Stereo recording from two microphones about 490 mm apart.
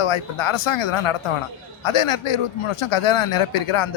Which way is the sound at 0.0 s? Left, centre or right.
Left.